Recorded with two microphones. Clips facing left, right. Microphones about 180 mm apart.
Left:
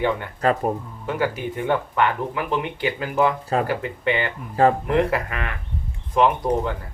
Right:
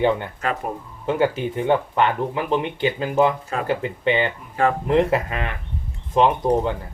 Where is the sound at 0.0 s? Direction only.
25° right (ahead or behind).